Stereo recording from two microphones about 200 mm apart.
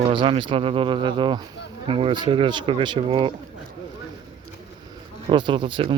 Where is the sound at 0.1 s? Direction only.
25° right (ahead or behind).